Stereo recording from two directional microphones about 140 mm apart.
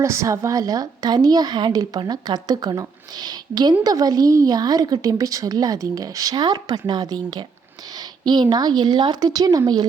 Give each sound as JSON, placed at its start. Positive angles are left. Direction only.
{"t": 0.0, "sound": "a woman's voice", "side_deg": -20}